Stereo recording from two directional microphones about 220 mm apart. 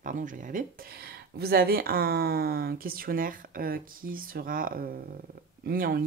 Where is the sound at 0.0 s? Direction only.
35° right (ahead or behind).